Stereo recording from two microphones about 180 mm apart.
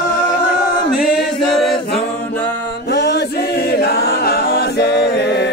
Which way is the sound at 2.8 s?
70° left (ahead or behind).